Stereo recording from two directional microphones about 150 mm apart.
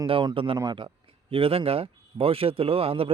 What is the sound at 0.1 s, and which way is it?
Speech, 35° right (ahead or behind).